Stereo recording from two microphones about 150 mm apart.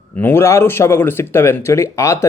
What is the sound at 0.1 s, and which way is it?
A man's voice, 15° left (ahead or behind).